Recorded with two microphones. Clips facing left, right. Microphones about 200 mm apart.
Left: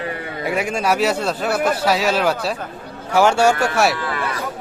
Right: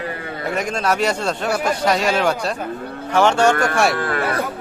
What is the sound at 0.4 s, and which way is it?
A man's voice, 10° left (ahead or behind).